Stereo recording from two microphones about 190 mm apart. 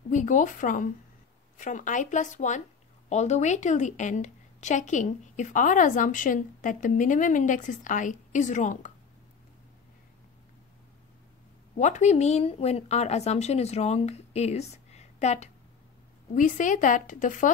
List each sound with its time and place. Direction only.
0.1 s a woman's voice: 40° left (ahead or behind)
11.7 s a woman's voice: 40° left (ahead or behind)